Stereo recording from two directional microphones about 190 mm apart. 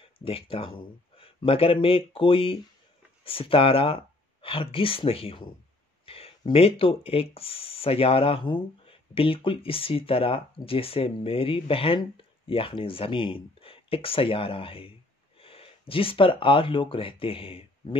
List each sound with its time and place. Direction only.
0.0 s speech: 30° left (ahead or behind)